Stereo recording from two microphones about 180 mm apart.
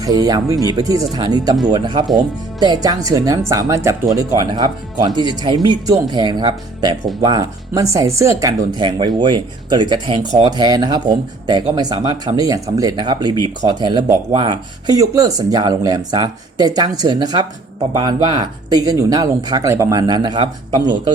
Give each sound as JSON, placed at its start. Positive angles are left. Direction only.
{"t": 0.0, "sound": "speech", "side_deg": -20}